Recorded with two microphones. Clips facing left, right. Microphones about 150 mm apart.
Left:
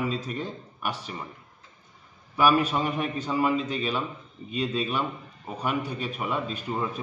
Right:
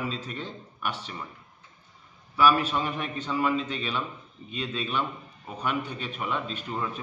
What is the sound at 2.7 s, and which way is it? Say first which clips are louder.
A man's voice: left 3 dB; 10° left (ahead or behind).